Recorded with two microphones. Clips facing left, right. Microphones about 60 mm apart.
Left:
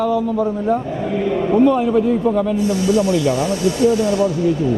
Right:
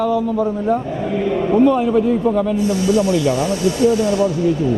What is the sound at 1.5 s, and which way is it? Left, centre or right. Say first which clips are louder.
Speech: even; right.